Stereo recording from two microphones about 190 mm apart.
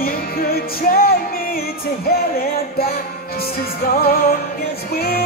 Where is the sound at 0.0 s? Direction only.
50° left (ahead or behind).